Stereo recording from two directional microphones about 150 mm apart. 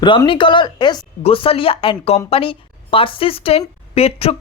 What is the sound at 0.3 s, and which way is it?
A woman's voice, 35° left (ahead or behind).